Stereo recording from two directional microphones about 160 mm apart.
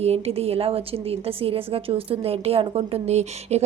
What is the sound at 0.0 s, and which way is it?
A woman's voice, 40° right (ahead or behind).